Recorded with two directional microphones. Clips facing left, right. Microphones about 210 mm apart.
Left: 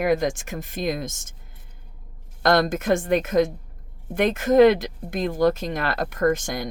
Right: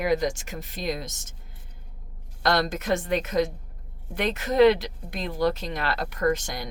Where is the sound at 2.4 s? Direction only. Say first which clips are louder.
Left 5 dB; 50° left (ahead or behind).